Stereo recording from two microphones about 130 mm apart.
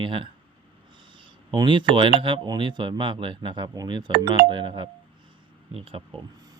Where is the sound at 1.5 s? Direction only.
35° right (ahead or behind).